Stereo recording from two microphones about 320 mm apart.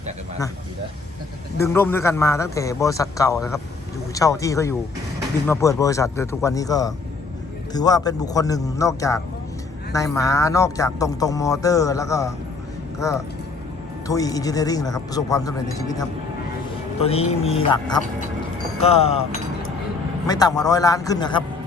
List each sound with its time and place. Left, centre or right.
1.5 s speech: centre
20.2 s speech: centre